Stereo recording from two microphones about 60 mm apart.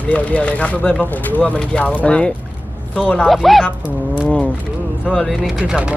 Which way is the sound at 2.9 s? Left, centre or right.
Left.